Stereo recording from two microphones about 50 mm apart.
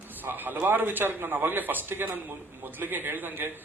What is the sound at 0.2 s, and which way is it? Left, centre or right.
A man's voice, right.